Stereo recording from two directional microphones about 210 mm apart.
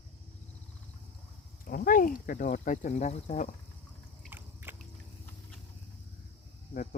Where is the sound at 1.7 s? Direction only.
40° left (ahead or behind).